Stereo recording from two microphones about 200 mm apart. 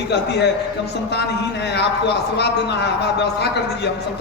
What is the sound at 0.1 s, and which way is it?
Speech, 55° left (ahead or behind).